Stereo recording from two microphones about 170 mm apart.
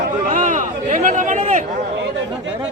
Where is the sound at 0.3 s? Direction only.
50° right (ahead or behind).